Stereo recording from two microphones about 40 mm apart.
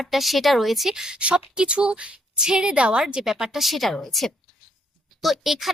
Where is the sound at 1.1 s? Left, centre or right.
Right.